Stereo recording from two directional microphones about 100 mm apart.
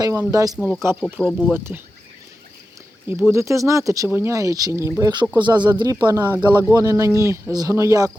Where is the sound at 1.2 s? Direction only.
10° left (ahead or behind).